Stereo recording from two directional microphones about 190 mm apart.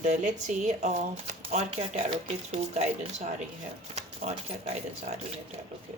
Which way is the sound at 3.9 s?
35° right (ahead or behind).